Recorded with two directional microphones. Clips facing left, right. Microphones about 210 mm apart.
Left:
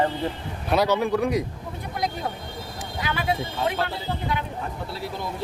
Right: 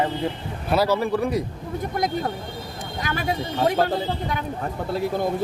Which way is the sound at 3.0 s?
45° right (ahead or behind).